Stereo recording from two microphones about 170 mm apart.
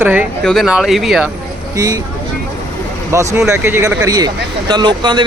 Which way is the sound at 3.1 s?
15° right (ahead or behind).